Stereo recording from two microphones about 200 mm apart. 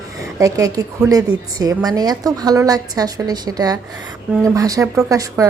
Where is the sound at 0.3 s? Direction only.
15° right (ahead or behind).